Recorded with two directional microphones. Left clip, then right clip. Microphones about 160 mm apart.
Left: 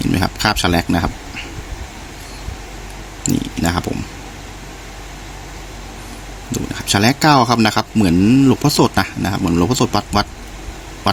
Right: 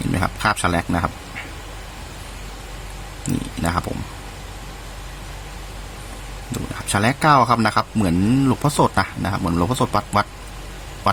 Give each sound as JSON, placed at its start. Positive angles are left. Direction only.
{"t": 0.1, "sound": "speech", "side_deg": 15}
{"t": 3.6, "sound": "speech", "side_deg": 15}
{"t": 6.5, "sound": "speech", "side_deg": 15}